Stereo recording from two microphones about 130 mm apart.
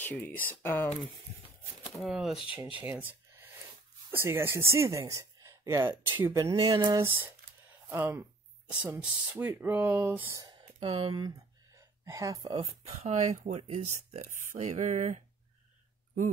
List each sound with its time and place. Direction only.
0.0 s speech: 15° left (ahead or behind)
2.0 s speech: centre (ahead or behind)
2.7 s speech: 10° right (ahead or behind)
6.5 s a sound: 35° right (ahead or behind)
7.9 s a sound: 20° right (ahead or behind)
8.8 s speech: 15° right (ahead or behind)
10.4 s speech: 45° right (ahead or behind)
11.7 s a sound: 25° right (ahead or behind)
12.5 s speech: 50° right (ahead or behind)